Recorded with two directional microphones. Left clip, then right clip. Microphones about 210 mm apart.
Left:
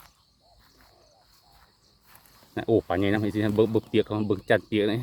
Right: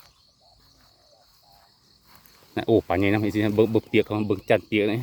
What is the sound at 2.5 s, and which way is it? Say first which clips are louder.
Speech: right 3 dB; 20° right (ahead or behind).